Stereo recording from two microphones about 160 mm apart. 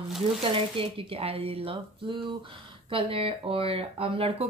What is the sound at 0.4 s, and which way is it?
Speech, 35° right (ahead or behind).